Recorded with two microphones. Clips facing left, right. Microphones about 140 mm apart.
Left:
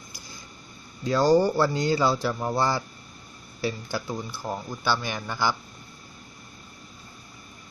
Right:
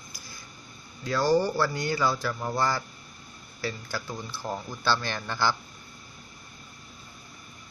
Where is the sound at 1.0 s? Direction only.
20° left (ahead or behind).